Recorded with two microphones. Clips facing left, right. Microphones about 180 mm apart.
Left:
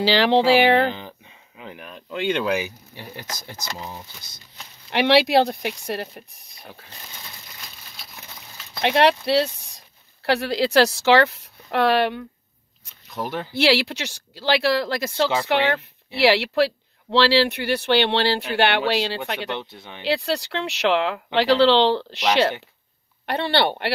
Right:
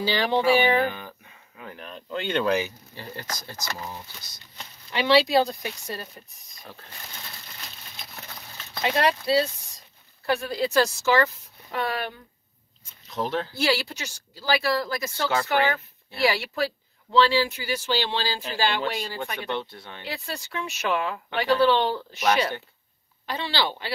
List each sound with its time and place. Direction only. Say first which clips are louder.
0.0 s speech: left 5 dB; 80° left
0.8 s speech: left 4 dB; 20° left (ahead or behind)
4.9 s speech: left 3 dB; 70° left (ahead or behind)
6.6 s speech: left 2 dB; 10° left (ahead or behind)
8.8 s speech: left 5 dB; 75° left (ahead or behind)
13.1 s speech: right 1 dB; 10° left (ahead or behind)
13.5 s speech: left 6 dB; 80° left
23.2 s a woman's voice: left 7 dB; 60° left (ahead or behind)